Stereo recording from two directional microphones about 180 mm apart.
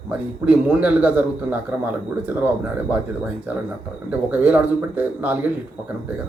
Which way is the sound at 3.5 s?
10° right (ahead or behind).